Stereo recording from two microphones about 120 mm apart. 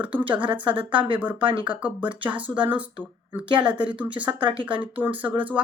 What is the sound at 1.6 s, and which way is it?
Speech, 10° right (ahead or behind).